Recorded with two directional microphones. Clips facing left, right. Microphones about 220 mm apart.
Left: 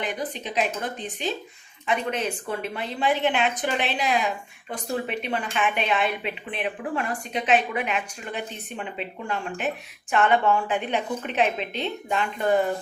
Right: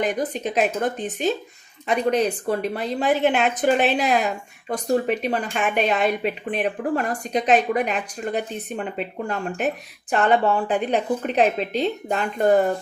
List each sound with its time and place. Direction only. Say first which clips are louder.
0.0 s speech: right 7 dB; 45° right (ahead or behind)